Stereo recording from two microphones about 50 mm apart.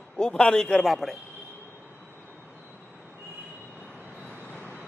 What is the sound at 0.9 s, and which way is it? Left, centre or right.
Speech, centre.